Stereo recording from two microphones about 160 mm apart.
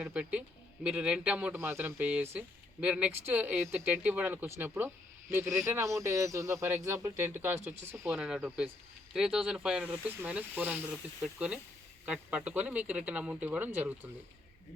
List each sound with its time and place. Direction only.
0.0 s speech: 5° right (ahead or behind)
8.1 s speech: 5° right (ahead or behind)